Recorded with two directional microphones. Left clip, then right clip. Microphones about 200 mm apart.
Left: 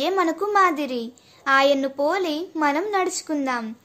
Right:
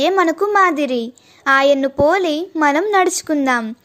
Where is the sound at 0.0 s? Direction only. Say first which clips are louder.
Right 7 dB; 30° right (ahead or behind).